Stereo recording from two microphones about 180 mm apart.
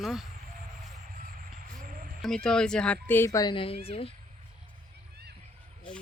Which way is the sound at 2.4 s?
5° left (ahead or behind).